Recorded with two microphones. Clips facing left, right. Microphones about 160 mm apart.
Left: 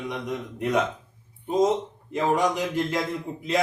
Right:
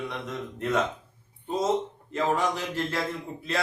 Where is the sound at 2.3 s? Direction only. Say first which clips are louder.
Left 4 dB; 15° left (ahead or behind).